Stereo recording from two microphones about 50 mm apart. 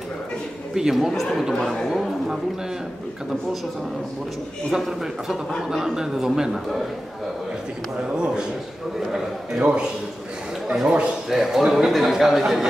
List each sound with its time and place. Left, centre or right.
0.7 s a man's voice: centre
1.1 s a man's voice: centre
4.6 s a man's voice: centre
9.1 s a man's voice: centre
11.2 s a man's voice: centre